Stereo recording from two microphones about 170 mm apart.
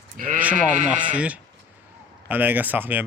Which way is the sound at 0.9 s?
10° right (ahead or behind).